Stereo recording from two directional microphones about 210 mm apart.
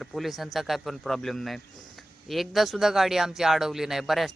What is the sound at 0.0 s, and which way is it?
Speech, centre (ahead or behind).